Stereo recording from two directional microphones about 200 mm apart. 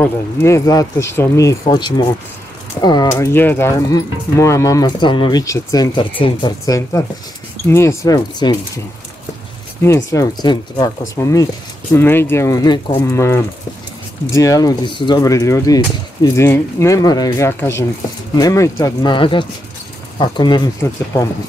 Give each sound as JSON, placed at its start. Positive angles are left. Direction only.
{"t": 0.0, "sound": "speech", "side_deg": 15}
{"t": 9.8, "sound": "speech", "side_deg": 15}